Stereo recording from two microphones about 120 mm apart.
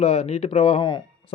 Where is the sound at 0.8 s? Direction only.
40° left (ahead or behind).